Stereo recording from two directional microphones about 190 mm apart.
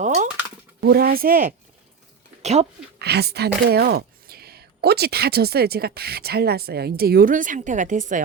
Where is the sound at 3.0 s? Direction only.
60° right (ahead or behind).